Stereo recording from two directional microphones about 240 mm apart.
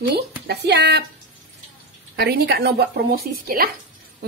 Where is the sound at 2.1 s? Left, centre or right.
Right.